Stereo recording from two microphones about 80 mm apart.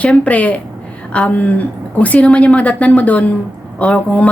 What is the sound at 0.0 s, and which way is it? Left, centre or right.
A woman's voice, centre.